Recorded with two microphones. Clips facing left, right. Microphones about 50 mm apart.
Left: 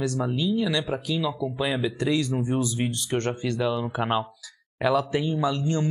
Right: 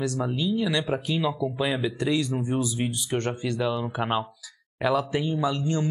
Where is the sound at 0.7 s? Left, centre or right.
Right.